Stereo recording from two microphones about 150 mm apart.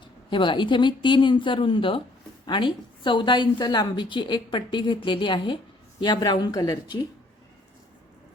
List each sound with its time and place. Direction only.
0.3 s a woman's voice: 30° left (ahead or behind)